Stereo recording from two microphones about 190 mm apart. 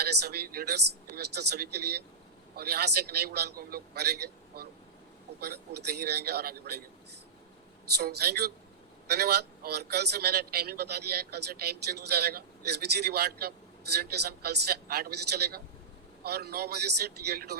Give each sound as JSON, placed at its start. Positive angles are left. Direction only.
{"t": 0.0, "sound": "a man's voice", "side_deg": -60}
{"t": 7.9, "sound": "a man's voice", "side_deg": -60}